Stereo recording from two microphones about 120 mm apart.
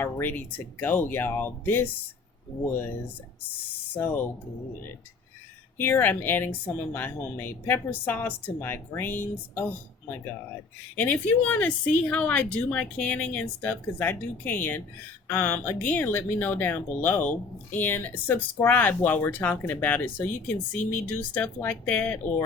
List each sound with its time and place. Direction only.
0.0 s speech: 15° left (ahead or behind)
3.9 s speech: 15° left (ahead or behind)
5.7 s speech: 15° left (ahead or behind)